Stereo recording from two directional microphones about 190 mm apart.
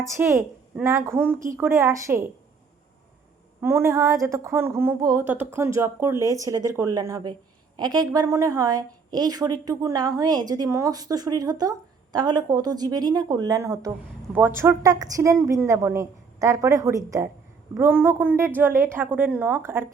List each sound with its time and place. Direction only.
0.0 s a woman's voice: 15° right (ahead or behind)
3.6 s a woman's voice: 15° right (ahead or behind)